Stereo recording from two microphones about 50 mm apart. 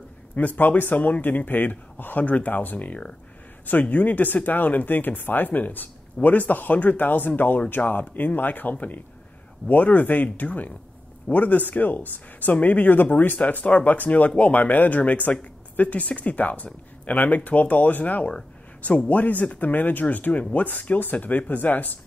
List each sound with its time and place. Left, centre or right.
0.4 s speech: left